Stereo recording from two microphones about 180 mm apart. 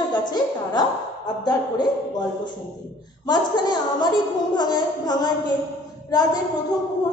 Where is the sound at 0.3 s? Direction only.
20° left (ahead or behind).